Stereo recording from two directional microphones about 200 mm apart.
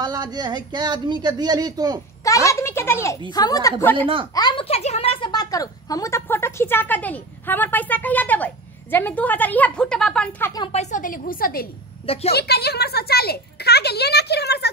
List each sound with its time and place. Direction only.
0.0 s speech: 20° right (ahead or behind)
2.2 s a sound: 15° left (ahead or behind)
3.3 s a woman's voice: 20° left (ahead or behind)
10.7 s a child's voice: 35° left (ahead or behind); by 14.7 s 55° left (ahead or behind)